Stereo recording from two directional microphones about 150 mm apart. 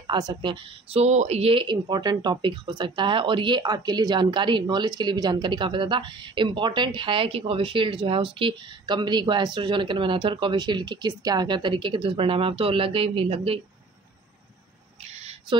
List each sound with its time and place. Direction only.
0.0 s speech: 30° right (ahead or behind)